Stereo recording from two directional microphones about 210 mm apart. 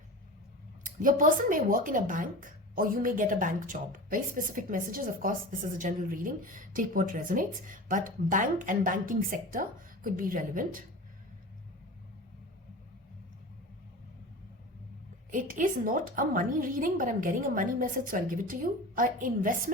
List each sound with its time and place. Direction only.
0.9 s speech: 40° right (ahead or behind)
15.3 s speech: 40° right (ahead or behind)